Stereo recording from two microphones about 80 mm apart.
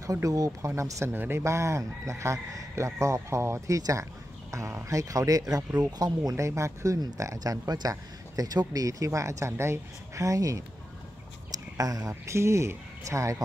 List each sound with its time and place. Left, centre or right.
0.0 s speech: right
1.1 s speech: right
6.3 s speech: right
11.7 s speech: right